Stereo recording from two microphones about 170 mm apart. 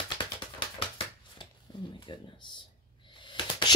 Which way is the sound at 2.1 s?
30° left (ahead or behind).